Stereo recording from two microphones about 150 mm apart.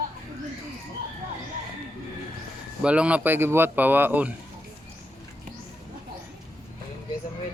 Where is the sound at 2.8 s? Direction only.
10° right (ahead or behind).